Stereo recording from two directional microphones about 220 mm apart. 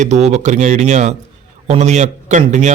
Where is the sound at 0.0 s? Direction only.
30° right (ahead or behind).